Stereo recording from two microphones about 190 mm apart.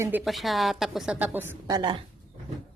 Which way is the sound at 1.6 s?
25° right (ahead or behind).